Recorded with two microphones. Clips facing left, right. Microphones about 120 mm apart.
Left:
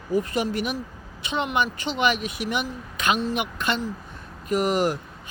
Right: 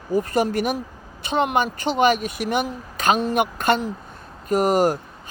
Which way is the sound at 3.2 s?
50° right (ahead or behind).